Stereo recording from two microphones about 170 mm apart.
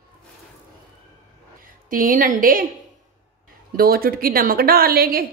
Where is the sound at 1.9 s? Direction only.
55° right (ahead or behind).